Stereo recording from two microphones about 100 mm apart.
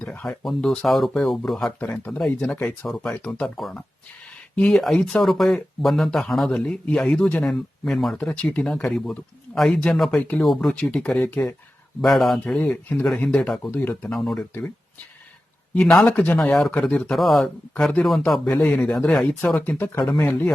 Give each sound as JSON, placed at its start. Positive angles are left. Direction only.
{"t": 0.0, "sound": "a sound", "side_deg": 10}
{"t": 0.4, "sound": "a man's voice", "side_deg": 5}
{"t": 3.4, "sound": "a man's voice", "side_deg": 0}
{"t": 12.0, "sound": "a man's voice", "side_deg": 0}
{"t": 12.5, "sound": "speech", "side_deg": 15}
{"t": 14.1, "sound": "a man's voice", "side_deg": 5}
{"t": 15.7, "sound": "a man's voice", "side_deg": 5}
{"t": 16.0, "sound": "speech", "side_deg": 15}
{"t": 16.4, "sound": "a man's voice", "side_deg": 5}
{"t": 18.5, "sound": "speech", "side_deg": 15}
{"t": 19.5, "sound": "speech", "side_deg": 20}